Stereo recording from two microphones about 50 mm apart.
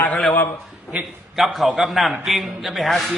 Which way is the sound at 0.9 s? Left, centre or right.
Right.